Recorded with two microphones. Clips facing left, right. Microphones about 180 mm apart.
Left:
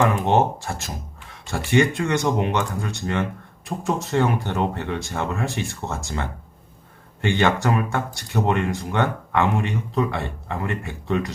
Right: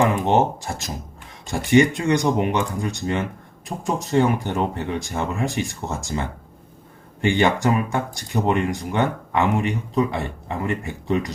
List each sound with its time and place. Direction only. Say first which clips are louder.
0.0 s speech: right 1 dB; 15° right (ahead or behind)